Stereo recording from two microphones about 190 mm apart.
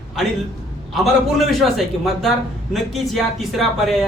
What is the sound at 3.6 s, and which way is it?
Speech, centre (ahead or behind).